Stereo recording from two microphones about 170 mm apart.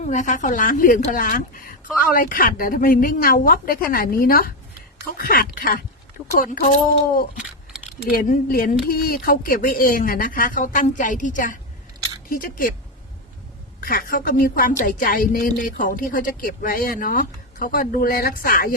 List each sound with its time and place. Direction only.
0.0 s a woman's voice: 45° left (ahead or behind)
7.9 s a woman's voice: 60° left (ahead or behind)
13.8 s a woman's voice: 55° left (ahead or behind)